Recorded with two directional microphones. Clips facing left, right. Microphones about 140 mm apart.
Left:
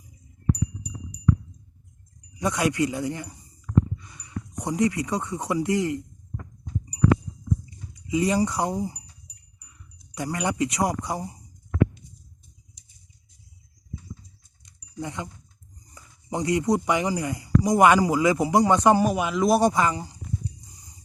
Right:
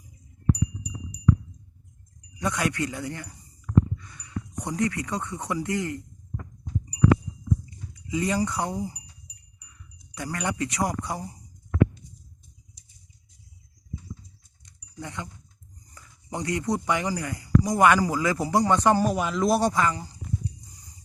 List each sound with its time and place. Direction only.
2.4 s speech: 20° left (ahead or behind)
8.0 s speech: 20° left (ahead or behind)
10.2 s speech: 15° left (ahead or behind)
14.6 s a sound: 15° left (ahead or behind)
16.0 s speech: 20° left (ahead or behind)
19.1 s speech: 5° left (ahead or behind)